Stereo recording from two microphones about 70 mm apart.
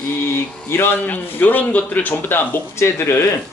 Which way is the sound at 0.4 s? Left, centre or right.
Centre.